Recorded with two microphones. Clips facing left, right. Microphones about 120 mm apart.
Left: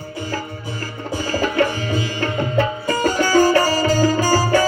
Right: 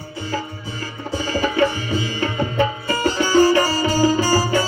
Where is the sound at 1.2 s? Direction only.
15° right (ahead or behind).